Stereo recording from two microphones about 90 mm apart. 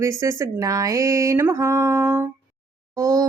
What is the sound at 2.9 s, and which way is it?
Speech, 40° right (ahead or behind).